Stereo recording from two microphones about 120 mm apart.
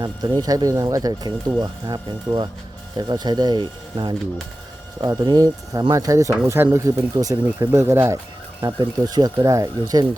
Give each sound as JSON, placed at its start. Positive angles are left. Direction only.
{"t": 0.0, "sound": "speech", "side_deg": -35}
{"t": 8.6, "sound": "speech", "side_deg": -35}